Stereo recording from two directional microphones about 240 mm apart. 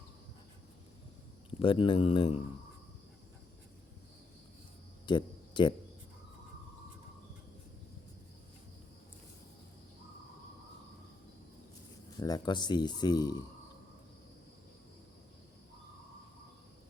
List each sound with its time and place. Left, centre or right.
1.5 s speech: left
5.0 s cricket: centre
12.1 s speech: centre